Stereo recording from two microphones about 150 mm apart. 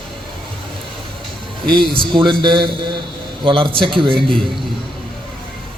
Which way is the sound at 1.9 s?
35° right (ahead or behind).